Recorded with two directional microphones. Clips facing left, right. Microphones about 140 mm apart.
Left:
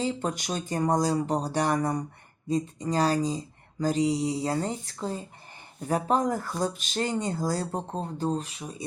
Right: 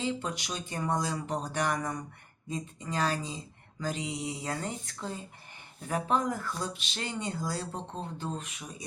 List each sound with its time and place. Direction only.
0.0 s speech: 40° left (ahead or behind)